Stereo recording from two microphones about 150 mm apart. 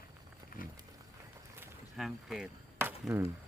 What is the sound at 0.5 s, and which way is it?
Wild animals, 75° left (ahead or behind).